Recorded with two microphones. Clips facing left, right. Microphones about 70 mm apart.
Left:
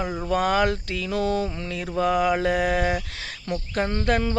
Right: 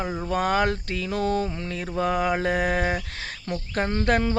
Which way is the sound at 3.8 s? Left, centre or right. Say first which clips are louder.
Left 1 dB; right.